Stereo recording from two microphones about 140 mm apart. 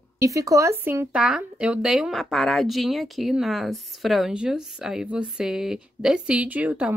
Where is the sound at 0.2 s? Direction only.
25° right (ahead or behind).